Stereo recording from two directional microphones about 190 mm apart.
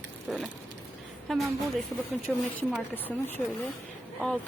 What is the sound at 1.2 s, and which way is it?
A woman's voice, centre (ahead or behind).